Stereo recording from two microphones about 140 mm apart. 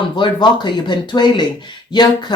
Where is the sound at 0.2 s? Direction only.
30° left (ahead or behind).